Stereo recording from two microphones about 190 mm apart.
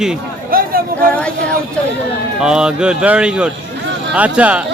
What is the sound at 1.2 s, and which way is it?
A man's voice, 5° left (ahead or behind).